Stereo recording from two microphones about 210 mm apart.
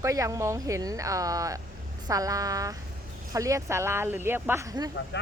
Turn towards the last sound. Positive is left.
turn(degrees=55)  # may be behind; listen again after turning